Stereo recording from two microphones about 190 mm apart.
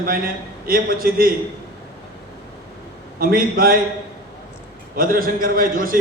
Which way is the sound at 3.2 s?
50° right (ahead or behind).